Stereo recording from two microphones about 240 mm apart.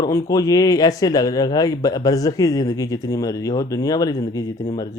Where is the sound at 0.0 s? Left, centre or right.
Centre.